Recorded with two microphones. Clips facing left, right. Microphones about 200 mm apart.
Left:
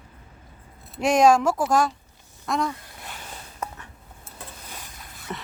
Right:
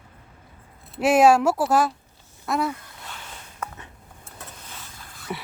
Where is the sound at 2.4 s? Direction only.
5° right (ahead or behind).